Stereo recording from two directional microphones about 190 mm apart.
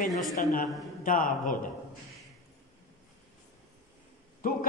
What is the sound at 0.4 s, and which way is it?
A man's voice, 45° left (ahead or behind).